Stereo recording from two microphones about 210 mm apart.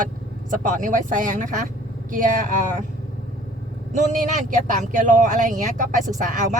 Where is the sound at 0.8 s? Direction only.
40° right (ahead or behind).